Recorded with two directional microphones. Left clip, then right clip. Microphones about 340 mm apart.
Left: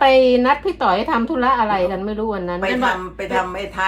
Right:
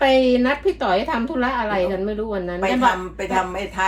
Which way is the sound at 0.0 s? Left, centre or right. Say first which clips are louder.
Left 4 dB; centre.